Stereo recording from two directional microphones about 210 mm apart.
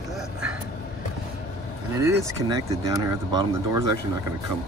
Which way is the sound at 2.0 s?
15° right (ahead or behind).